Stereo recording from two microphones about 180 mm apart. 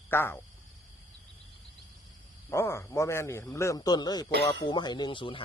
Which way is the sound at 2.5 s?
15° left (ahead or behind).